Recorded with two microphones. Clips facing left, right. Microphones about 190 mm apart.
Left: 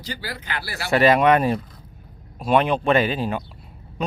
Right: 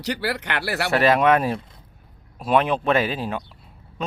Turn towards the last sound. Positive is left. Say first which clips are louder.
# left 2 dB
turn(degrees=0)  # may be behind; listen again after turning